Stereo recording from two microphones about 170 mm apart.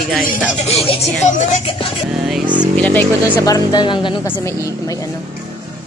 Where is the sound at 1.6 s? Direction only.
30° left (ahead or behind).